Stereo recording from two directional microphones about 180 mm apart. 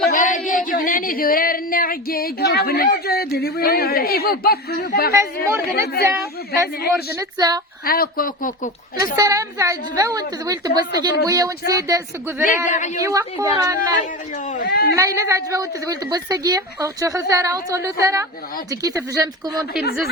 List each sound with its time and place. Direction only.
0.1 s a sound: 45° left (ahead or behind)
5.1 s a woman's voice: 15° right (ahead or behind)
5.6 s speech: 60° left (ahead or behind)
6.0 s a woman's voice: 15° right (ahead or behind)
7.9 s speech: 55° left (ahead or behind)
9.1 s a woman's voice: 20° right (ahead or behind)
12.5 s speech: 45° left (ahead or behind)
13.0 s a woman's voice: 20° right (ahead or behind)
13.7 s speech: 45° left (ahead or behind)
14.7 s speech: 65° left (ahead or behind)
14.9 s a woman's voice: 15° right (ahead or behind)